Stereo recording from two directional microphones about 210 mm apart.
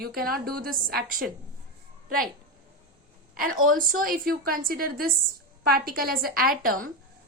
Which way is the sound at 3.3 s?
40° right (ahead or behind).